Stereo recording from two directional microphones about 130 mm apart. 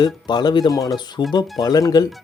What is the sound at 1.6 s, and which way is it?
Speech, 30° left (ahead or behind).